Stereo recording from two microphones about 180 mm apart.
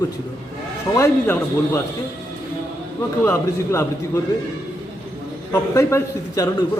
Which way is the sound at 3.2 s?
15° left (ahead or behind).